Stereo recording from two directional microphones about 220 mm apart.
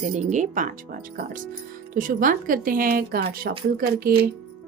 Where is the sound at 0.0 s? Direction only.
30° right (ahead or behind).